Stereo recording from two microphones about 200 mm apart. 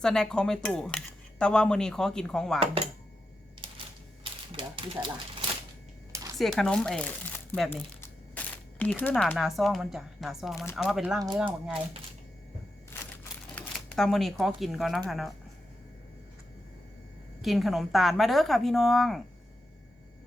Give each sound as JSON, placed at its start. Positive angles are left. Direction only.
{"t": 0.0, "sound": "speech", "side_deg": 5}
{"t": 2.6, "sound": "speech", "side_deg": -30}
{"t": 4.2, "sound": "typewriter", "side_deg": -25}
{"t": 6.1, "sound": "a sound", "side_deg": -15}
{"t": 6.3, "sound": "speech", "side_deg": 0}
{"t": 8.8, "sound": "speech", "side_deg": 10}
{"t": 13.6, "sound": "speech", "side_deg": 0}
{"t": 17.4, "sound": "speech", "side_deg": 0}